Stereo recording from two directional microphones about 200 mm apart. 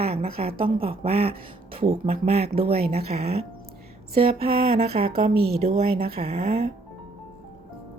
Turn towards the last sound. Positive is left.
turn(degrees=-30)  # may be behind; listen again after turning